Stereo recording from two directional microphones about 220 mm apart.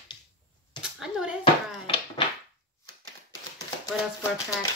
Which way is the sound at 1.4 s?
20° left (ahead or behind).